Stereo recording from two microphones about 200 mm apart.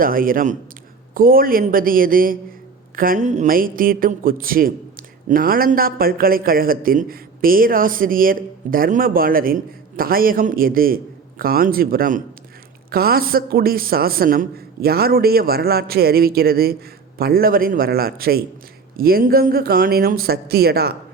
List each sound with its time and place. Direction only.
0.0 s a man's voice: 45° right (ahead or behind)